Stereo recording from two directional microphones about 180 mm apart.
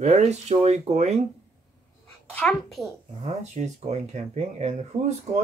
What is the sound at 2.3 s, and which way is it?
Speech, 5° left (ahead or behind).